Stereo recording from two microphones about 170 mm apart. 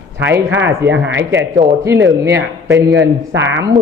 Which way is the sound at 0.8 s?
90° right.